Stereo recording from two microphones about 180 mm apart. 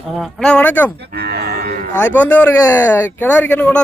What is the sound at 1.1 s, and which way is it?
Speech, 60° right (ahead or behind).